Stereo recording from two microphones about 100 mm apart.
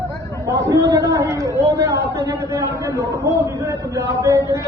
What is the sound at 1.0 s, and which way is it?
A man's voice, 30° right (ahead or behind).